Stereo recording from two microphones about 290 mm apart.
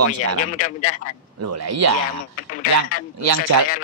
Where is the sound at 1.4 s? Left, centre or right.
Right.